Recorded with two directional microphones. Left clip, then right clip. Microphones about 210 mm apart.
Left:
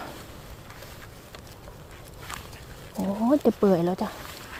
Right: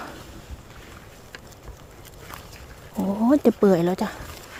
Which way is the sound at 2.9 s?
25° right (ahead or behind).